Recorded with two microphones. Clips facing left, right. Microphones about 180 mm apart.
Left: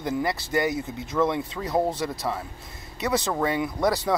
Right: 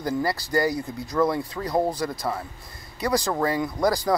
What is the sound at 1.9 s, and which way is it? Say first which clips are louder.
Speech: right 1 dB; 25° left (ahead or behind).